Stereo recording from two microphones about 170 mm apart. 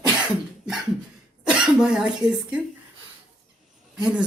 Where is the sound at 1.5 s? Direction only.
5° right (ahead or behind).